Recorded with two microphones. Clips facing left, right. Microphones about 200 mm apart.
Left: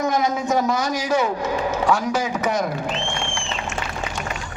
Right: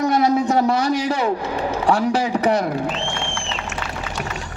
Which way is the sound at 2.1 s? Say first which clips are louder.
Right 3 dB; 35° right (ahead or behind).